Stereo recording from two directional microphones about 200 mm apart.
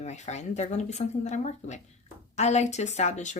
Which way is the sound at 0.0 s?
35° left (ahead or behind).